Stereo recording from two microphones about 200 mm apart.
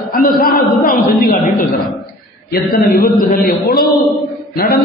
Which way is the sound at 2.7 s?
45° left (ahead or behind).